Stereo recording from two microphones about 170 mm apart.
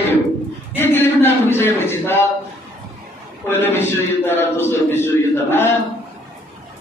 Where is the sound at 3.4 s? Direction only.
15° left (ahead or behind).